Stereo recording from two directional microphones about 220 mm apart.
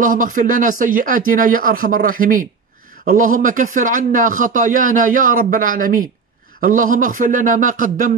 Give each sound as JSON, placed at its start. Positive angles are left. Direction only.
{"t": 0.0, "sound": "a man's voice", "side_deg": -35}